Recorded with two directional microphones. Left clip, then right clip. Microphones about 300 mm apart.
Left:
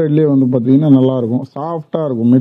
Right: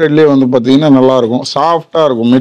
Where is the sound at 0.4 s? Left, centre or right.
Right.